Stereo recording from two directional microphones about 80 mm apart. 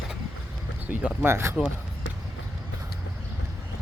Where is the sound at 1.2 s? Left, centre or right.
Right.